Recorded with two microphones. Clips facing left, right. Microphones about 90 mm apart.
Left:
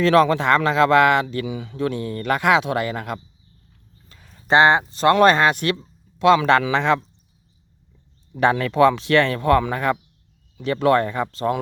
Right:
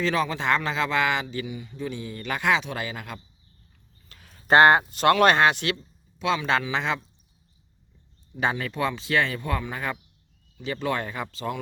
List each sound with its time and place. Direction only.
0.0 s speech: 65° left (ahead or behind)
4.2 s speech: 25° left (ahead or behind); by 5.7 s 45° left (ahead or behind)
6.1 s speech: 70° left (ahead or behind)
8.3 s speech: 60° left (ahead or behind)